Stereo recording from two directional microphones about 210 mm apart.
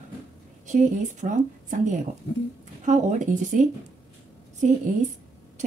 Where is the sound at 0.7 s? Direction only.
35° right (ahead or behind).